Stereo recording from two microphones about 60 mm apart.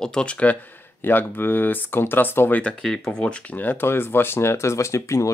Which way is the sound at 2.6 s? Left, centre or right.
Centre.